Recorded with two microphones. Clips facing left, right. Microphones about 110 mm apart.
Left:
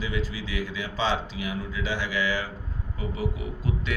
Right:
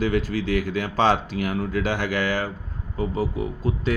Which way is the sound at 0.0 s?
60° right (ahead or behind).